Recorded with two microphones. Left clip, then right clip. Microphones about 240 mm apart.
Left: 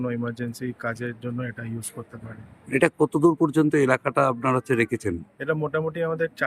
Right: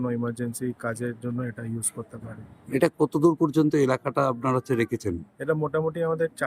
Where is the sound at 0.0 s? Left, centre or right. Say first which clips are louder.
Even; centre.